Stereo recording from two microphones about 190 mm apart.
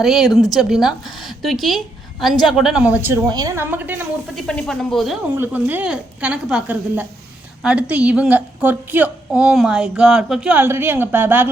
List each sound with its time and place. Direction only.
0.0 s a woman's voice: centre (ahead or behind)
4.4 s a woman's voice: centre (ahead or behind)
5.3 s a woman's voice: 10° right (ahead or behind)